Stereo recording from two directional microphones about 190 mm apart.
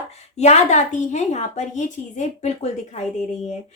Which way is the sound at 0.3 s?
35° left (ahead or behind).